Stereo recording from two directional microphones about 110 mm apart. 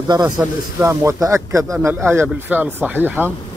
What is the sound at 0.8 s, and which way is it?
Speech, 25° right (ahead or behind).